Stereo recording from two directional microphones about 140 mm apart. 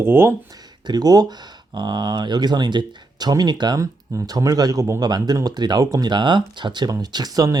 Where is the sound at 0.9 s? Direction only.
30° right (ahead or behind).